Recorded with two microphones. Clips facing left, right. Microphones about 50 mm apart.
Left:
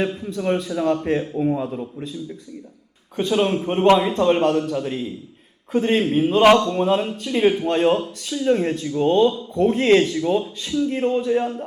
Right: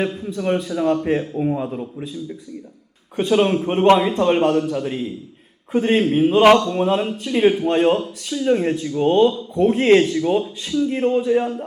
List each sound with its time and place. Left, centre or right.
0.3 s a man's voice: centre
3.2 s a man's voice: centre